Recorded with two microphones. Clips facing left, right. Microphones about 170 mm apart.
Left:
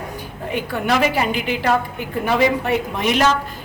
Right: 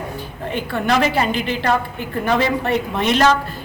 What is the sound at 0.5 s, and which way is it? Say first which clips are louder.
A woman's voice: right 1 dB; 10° left (ahead or behind).